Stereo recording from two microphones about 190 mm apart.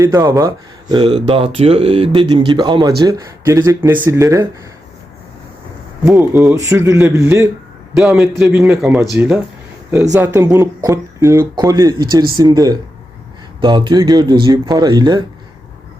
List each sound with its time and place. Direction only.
0.0 s speech: 15° right (ahead or behind)
6.1 s speech: 10° right (ahead or behind)
7.9 s a man's voice: centre (ahead or behind)
9.9 s speech: 15° right (ahead or behind)